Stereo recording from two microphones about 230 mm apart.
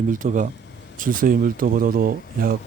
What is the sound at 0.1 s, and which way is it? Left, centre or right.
Speech, right.